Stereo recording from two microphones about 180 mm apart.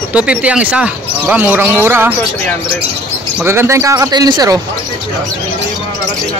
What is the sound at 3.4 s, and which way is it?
Speech, 15° right (ahead or behind).